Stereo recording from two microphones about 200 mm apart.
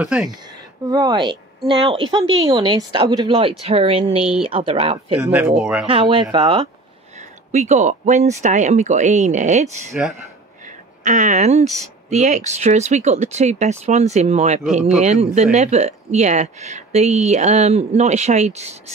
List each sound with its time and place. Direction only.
0.0 s speech: 5° right (ahead or behind)
0.8 s speech: 20° right (ahead or behind)
5.2 s speech: 10° right (ahead or behind)
5.9 s speech: 25° right (ahead or behind)
7.2 s speech: 35° right (ahead or behind)
11.1 s speech: 40° right (ahead or behind)